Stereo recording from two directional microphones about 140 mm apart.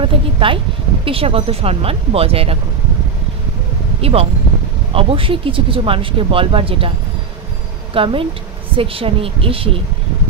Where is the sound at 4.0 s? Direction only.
45° right (ahead or behind).